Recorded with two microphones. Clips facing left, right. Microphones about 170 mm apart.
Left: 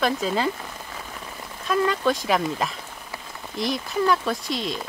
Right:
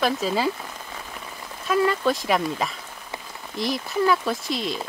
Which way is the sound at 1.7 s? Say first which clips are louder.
Right 1 dB; 5° right (ahead or behind).